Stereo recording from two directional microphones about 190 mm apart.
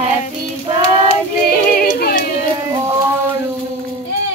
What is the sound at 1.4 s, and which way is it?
Music, 50° left (ahead or behind).